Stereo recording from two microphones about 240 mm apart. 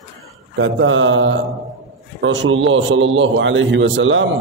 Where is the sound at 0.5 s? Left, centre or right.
Right.